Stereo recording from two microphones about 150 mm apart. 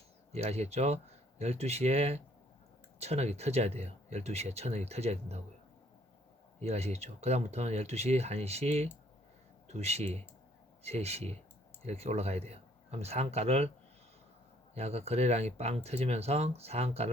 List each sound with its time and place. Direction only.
0.3 s speech: 45° right (ahead or behind)
6.6 s speech: 45° right (ahead or behind)
14.8 s speech: 45° right (ahead or behind)